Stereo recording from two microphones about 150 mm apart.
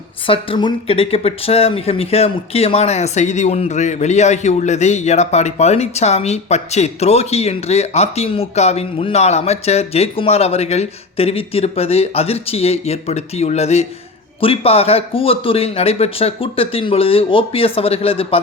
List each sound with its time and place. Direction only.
0.3 s speech: 35° left (ahead or behind)